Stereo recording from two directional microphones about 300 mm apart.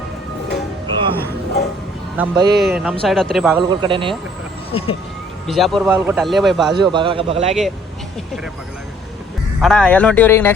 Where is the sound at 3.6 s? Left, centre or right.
Centre.